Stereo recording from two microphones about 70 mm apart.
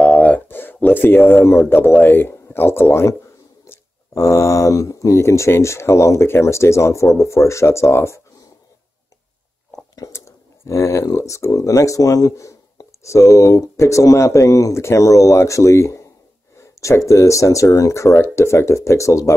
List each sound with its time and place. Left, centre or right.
0.0 s speech: centre; by 3.2 s left
4.1 s speech: left
10.1 s speech: left